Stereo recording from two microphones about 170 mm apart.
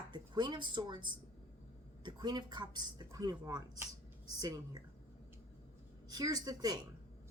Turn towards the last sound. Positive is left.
turn(degrees=-25)  # may be behind; listen again after turning